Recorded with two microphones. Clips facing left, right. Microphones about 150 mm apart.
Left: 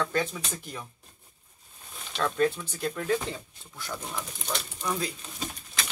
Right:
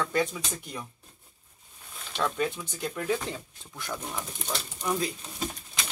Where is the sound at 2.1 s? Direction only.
5° right (ahead or behind).